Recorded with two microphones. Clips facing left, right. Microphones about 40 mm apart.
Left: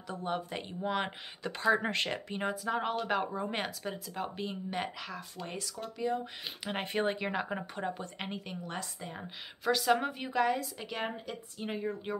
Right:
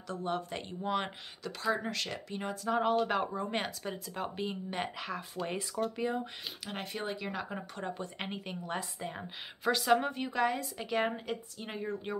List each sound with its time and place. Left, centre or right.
0.1 s speech: centre
1.4 s speech: left
2.6 s a woman's voice: centre
6.6 s speech: left
8.0 s a woman's voice: centre